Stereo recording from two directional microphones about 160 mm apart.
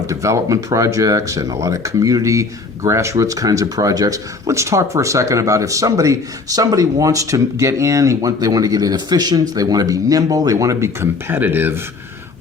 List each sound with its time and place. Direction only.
0.1 s speech: 20° right (ahead or behind)